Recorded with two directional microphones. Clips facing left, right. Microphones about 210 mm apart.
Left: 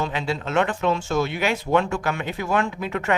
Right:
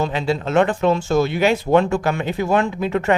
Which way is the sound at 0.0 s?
35° right (ahead or behind).